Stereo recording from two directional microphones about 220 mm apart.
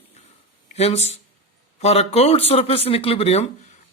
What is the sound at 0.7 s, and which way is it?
Speech, 30° left (ahead or behind).